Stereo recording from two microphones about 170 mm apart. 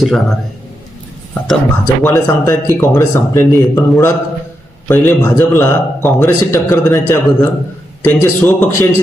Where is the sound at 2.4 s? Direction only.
15° left (ahead or behind).